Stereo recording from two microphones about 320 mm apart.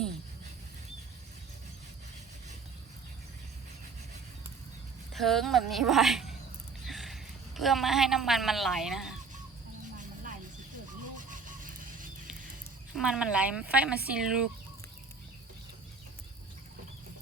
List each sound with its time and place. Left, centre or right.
5.1 s a man's voice: centre
11.2 s a sound: right
12.9 s speech: centre